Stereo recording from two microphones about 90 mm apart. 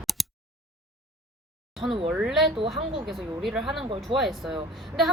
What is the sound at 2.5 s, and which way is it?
Speech, 75° right (ahead or behind).